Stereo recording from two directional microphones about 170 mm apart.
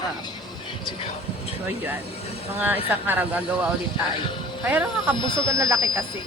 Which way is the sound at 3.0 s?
10° right (ahead or behind).